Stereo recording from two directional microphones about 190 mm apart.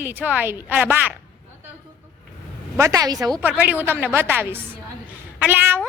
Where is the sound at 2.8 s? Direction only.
20° right (ahead or behind).